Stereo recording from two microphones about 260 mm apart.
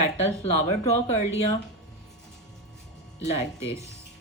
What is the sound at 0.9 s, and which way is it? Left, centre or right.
Speech, left.